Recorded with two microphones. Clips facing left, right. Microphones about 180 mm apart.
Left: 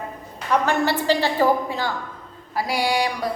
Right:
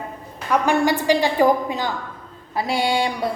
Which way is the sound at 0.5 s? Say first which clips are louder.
Right 2 dB; 15° right (ahead or behind).